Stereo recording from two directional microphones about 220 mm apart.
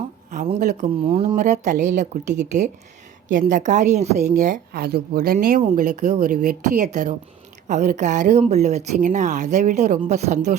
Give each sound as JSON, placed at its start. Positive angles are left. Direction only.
{"t": 0.4, "sound": "a woman's voice", "side_deg": -35}